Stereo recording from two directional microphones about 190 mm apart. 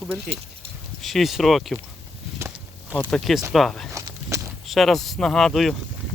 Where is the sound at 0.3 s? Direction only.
35° right (ahead or behind).